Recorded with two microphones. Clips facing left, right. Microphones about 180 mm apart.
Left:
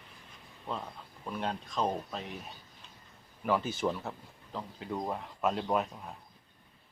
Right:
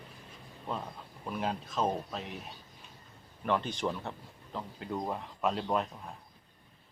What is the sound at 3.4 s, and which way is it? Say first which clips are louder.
Speech: left 1 dB; 5° left (ahead or behind).